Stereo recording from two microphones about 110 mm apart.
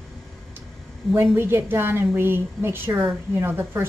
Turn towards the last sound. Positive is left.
turn(degrees=-20)  # may be behind; listen again after turning